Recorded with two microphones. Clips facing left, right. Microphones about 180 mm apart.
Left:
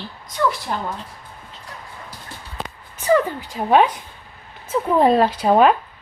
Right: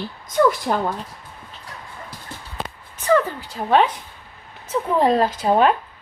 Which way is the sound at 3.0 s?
10° left (ahead or behind).